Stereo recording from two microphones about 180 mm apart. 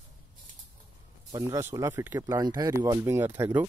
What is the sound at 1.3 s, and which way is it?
Speech, 15° right (ahead or behind).